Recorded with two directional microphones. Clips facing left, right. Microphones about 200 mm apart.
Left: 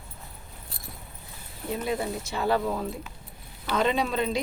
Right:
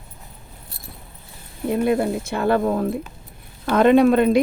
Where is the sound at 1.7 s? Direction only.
60° right (ahead or behind).